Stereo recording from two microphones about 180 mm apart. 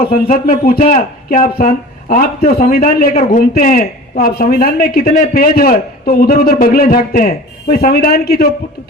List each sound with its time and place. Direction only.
0.3 s speech: 55° left (ahead or behind)